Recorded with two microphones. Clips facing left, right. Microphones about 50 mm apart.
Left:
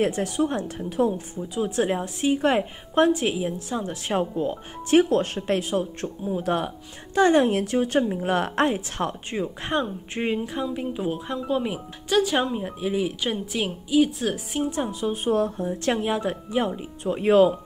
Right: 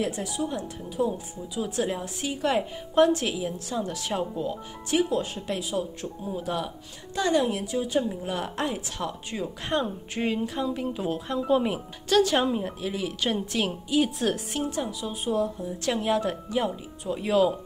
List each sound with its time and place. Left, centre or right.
0.0 s a woman's voice: left
1.6 s a woman's voice: left
8.7 s speech: left
9.4 s speech: left
11.3 s speech: centre
14.7 s speech: left
16.0 s speech: centre; by 17.5 s left